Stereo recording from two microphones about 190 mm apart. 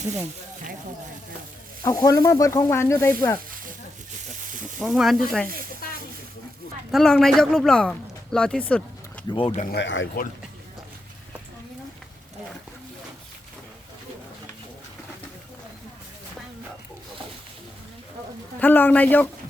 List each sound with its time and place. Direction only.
1.8 s speech: 20° left (ahead or behind)
4.8 s speech: centre (ahead or behind)
6.9 s speech: 5° left (ahead or behind)
9.5 s speech: 40° left (ahead or behind)
9.7 s speech: 75° left (ahead or behind)
18.6 s speech: 10° left (ahead or behind)